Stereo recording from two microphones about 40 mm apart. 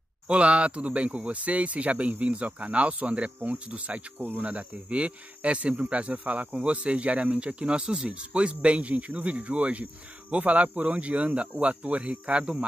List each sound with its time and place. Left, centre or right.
0.3 s speech: right
4.2 s speech: right
4.5 s speech: right